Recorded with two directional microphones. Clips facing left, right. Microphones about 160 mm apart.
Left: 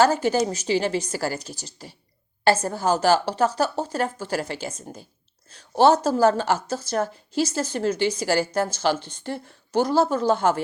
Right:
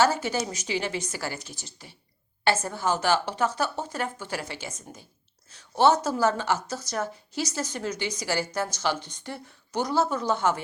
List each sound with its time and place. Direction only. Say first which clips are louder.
0.2 s a woman's voice: left 7 dB; 35° left (ahead or behind)